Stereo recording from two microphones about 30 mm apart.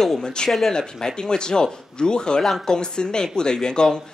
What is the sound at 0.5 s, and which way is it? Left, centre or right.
Speech, centre.